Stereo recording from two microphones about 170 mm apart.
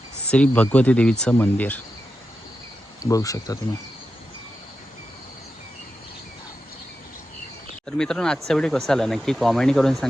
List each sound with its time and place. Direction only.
0.3 s speech: 5° left (ahead or behind)
3.0 s speech: 20° left (ahead or behind)
7.9 s speech: 5° left (ahead or behind)